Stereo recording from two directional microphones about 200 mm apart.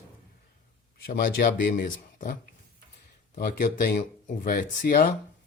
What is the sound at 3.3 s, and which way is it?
Speech, 50° left (ahead or behind).